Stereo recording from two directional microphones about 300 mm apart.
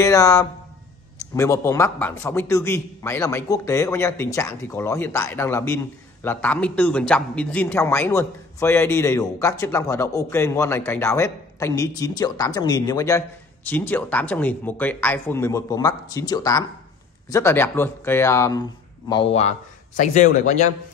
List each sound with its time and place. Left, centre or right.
0.0 s a man's voice: centre